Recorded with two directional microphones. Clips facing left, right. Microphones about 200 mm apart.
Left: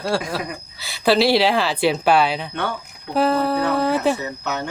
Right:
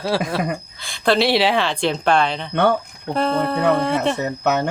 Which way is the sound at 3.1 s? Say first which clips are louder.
Left 1 dB; 5° left (ahead or behind).